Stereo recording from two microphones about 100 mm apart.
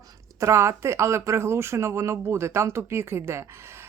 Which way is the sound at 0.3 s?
30° right (ahead or behind).